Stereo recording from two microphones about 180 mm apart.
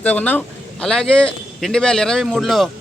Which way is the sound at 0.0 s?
10° left (ahead or behind).